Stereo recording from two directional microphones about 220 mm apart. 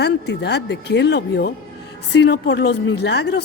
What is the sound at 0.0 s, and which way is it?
Speech, 50° left (ahead or behind).